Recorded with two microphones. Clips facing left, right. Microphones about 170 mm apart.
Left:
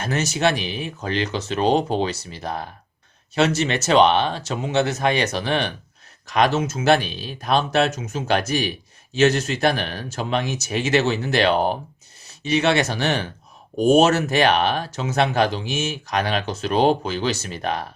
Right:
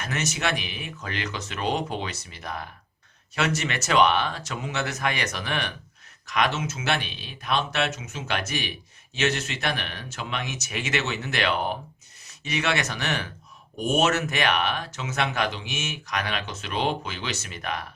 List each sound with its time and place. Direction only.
0.0 s speech: 35° left (ahead or behind)